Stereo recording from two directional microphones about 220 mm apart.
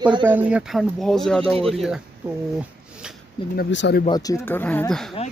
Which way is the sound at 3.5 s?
50° left (ahead or behind).